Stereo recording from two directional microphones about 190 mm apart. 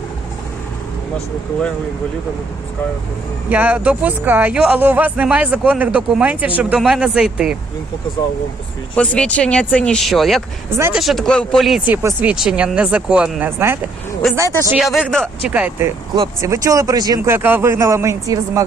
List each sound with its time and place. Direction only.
3.5 s speech: 10° right (ahead or behind)
9.0 s speech: 5° left (ahead or behind)
10.7 s speech: 10° right (ahead or behind)
11.0 s speech: centre (ahead or behind)
14.8 s speech: centre (ahead or behind)